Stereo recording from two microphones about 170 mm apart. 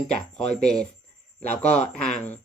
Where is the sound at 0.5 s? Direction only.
5° left (ahead or behind).